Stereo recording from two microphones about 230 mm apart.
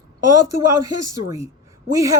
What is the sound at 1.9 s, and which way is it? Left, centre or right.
Speech, centre.